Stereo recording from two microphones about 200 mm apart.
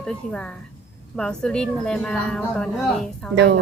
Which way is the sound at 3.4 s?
60° right (ahead or behind).